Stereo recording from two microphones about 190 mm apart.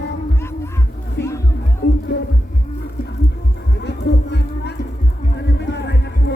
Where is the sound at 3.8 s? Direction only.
65° left (ahead or behind).